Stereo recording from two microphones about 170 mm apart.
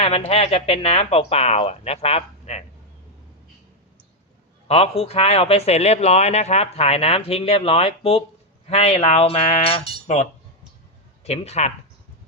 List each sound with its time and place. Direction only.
0.3 s speech: 35° left (ahead or behind)
4.7 s speech: 35° left (ahead or behind)